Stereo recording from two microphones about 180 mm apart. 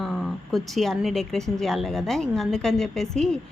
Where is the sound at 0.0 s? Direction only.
Centre (ahead or behind).